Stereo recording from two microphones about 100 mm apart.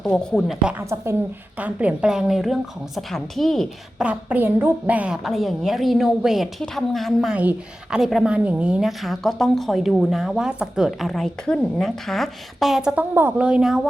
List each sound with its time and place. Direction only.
0.0 s a woman's voice: 5° left (ahead or behind)
0.8 s a woman's voice: 25° right (ahead or behind)
1.5 s a woman's voice: 15° right (ahead or behind); by 3.7 s 5° left (ahead or behind)
3.9 s a woman's voice: 10° right (ahead or behind)
5.1 s a woman's voice: centre (ahead or behind)
7.3 s a woman's voice: 10° right (ahead or behind)